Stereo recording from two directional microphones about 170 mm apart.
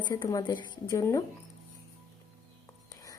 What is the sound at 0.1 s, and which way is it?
A woman's voice, 20° left (ahead or behind).